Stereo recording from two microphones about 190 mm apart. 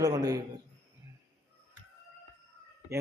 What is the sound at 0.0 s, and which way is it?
Speech, 20° right (ahead or behind).